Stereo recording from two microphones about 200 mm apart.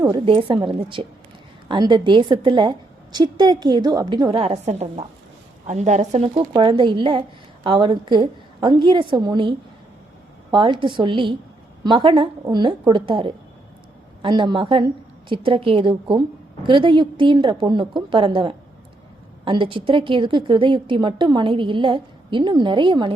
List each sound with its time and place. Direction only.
0.0 s speech: 25° right (ahead or behind)